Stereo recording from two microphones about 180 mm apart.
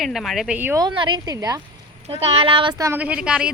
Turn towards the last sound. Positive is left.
turn(degrees=-5)  # may be behind; listen again after turning